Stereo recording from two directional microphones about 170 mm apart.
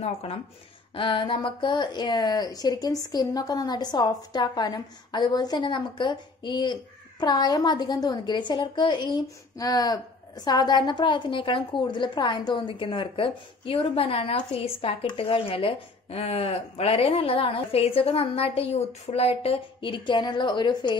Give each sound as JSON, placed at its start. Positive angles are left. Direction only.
{"t": 0.0, "sound": "a woman's voice", "side_deg": 35}